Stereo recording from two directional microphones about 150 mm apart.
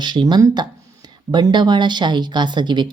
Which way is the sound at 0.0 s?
30° right (ahead or behind).